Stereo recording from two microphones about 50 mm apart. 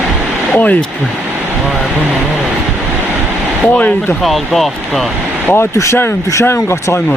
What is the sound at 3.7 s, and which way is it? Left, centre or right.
Speech, left.